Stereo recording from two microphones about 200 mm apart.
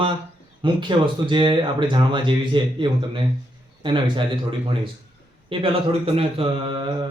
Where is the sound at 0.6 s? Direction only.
25° right (ahead or behind).